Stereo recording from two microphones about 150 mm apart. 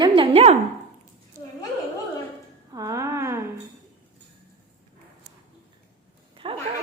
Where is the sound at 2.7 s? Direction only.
25° right (ahead or behind).